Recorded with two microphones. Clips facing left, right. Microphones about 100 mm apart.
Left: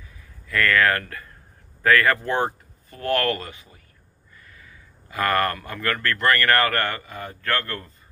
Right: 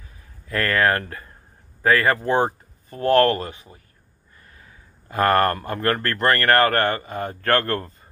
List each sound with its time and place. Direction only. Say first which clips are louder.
0.0 s a sound: left 1 dB; 35° right (ahead or behind)
1.8 s speech: even; 25° right (ahead or behind)
2.9 s speech: right 6 dB; 40° right (ahead or behind)